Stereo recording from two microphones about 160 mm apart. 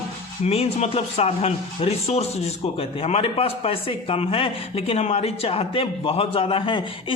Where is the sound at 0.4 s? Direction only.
40° left (ahead or behind).